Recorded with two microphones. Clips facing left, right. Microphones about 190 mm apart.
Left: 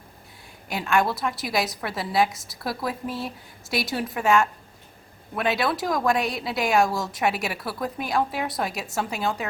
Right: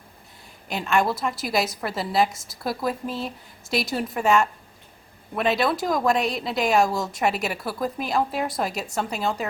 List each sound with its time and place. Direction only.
0.7 s a woman's voice: centre (ahead or behind)